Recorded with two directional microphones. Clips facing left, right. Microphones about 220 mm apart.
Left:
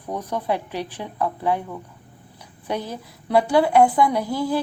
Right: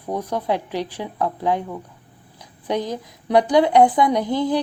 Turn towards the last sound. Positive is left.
turn(degrees=-20)  # may be behind; listen again after turning